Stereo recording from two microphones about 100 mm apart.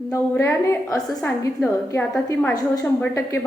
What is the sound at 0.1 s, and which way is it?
A woman's voice, 25° left (ahead or behind).